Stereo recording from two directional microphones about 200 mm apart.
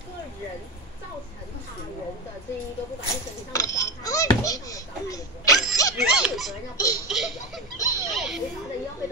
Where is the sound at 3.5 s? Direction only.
15° left (ahead or behind).